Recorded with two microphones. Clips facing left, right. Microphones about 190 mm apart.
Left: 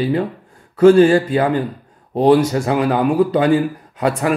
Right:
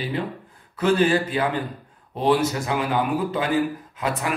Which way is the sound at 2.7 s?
40° left (ahead or behind).